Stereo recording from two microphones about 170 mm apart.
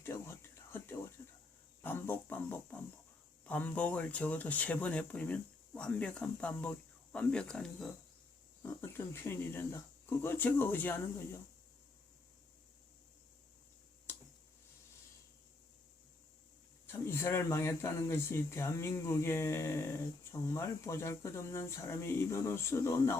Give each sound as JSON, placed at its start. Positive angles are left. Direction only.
{"t": 0.0, "sound": "a sound", "side_deg": 15}
{"t": 3.4, "sound": "speech", "side_deg": 10}
{"t": 8.6, "sound": "speech", "side_deg": 15}
{"t": 16.8, "sound": "speech", "side_deg": 15}